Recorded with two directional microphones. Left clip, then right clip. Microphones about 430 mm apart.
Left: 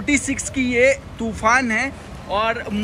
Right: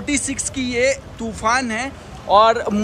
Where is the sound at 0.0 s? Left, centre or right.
Centre.